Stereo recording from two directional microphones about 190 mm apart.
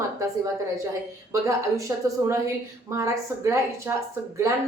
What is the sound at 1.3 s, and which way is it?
A woman's voice, 15° right (ahead or behind).